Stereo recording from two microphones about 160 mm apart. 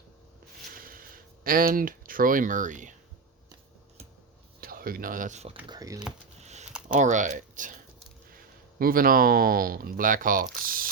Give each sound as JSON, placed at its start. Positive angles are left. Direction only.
{"t": 0.7, "sound": "a sound", "side_deg": -65}
{"t": 4.6, "sound": "speech", "side_deg": -65}
{"t": 5.6, "sound": "speech", "side_deg": -25}
{"t": 6.4, "sound": "a sound", "side_deg": -45}
{"t": 6.8, "sound": "speech", "side_deg": -50}
{"t": 8.8, "sound": "speech", "side_deg": -65}